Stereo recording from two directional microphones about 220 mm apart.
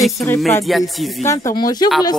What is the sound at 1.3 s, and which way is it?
Speech, 15° left (ahead or behind).